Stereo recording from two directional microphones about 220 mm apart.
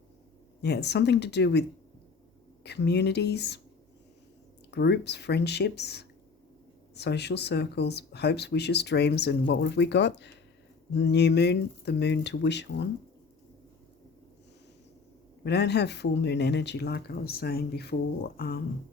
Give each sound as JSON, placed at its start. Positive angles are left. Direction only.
{"t": 0.6, "sound": "speech", "side_deg": 50}
{"t": 2.6, "sound": "speech", "side_deg": 50}
{"t": 4.7, "sound": "speech", "side_deg": 50}
{"t": 15.4, "sound": "speech", "side_deg": 50}